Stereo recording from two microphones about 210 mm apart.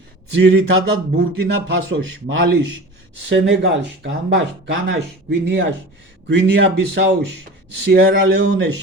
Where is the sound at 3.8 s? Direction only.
55° right (ahead or behind).